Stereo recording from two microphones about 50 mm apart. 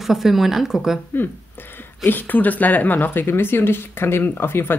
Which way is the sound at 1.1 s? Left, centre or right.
Left.